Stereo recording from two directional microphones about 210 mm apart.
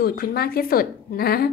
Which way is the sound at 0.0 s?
45° left (ahead or behind).